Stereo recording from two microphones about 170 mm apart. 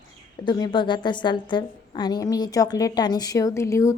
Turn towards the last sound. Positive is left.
turn(degrees=15)  # may be behind; listen again after turning